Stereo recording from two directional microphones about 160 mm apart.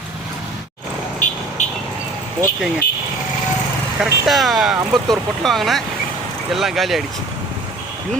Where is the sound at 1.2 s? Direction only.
50° left (ahead or behind).